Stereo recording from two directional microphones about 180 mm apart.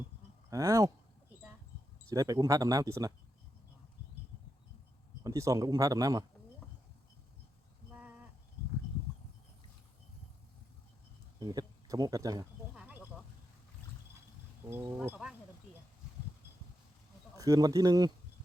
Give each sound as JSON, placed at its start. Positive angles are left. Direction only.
{"t": 0.5, "sound": "speech", "side_deg": -15}
{"t": 2.0, "sound": "speech", "side_deg": -20}
{"t": 5.2, "sound": "speech", "side_deg": -20}
{"t": 11.3, "sound": "speech", "side_deg": -20}
{"t": 12.7, "sound": "a sound", "side_deg": -5}
{"t": 14.9, "sound": "speech", "side_deg": -5}
{"t": 17.3, "sound": "speech", "side_deg": -20}